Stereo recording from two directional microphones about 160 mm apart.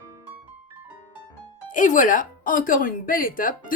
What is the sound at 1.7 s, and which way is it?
Speech, 55° left (ahead or behind).